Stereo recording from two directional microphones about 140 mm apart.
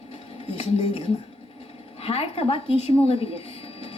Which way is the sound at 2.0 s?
45° left (ahead or behind).